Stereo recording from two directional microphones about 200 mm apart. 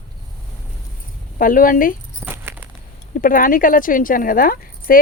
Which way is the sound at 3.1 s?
45° left (ahead or behind).